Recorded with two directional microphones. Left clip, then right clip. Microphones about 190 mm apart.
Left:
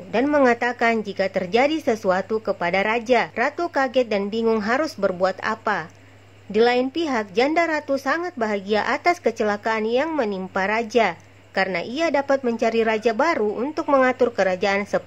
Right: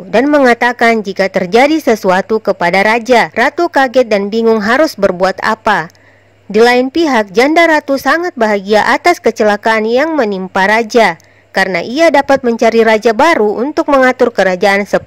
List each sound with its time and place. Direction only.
0.1 s a woman's voice: 45° right (ahead or behind)